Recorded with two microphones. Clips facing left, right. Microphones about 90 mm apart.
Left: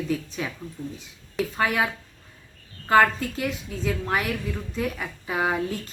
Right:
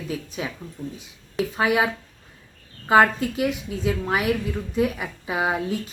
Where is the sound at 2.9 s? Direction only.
15° right (ahead or behind).